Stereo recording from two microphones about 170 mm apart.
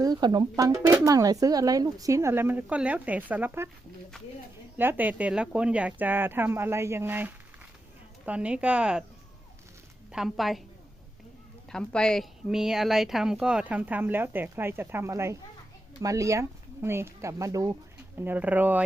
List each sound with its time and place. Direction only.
0.0 s speech: 25° right (ahead or behind)
4.8 s speech: 10° right (ahead or behind)
10.1 s speech: centre (ahead or behind)
11.7 s speech: 5° left (ahead or behind)